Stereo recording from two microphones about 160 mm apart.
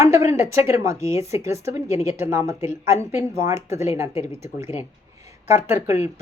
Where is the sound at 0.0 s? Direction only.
20° right (ahead or behind).